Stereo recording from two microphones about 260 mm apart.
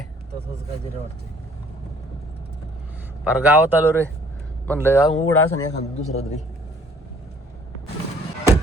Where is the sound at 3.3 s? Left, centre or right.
Centre.